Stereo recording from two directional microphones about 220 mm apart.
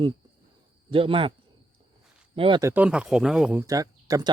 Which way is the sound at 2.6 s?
10° right (ahead or behind).